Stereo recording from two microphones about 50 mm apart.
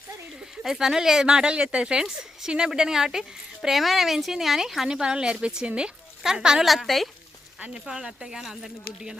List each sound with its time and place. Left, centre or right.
0.6 s a woman's voice: centre
6.7 s speech: centre
7.6 s a woman's voice: centre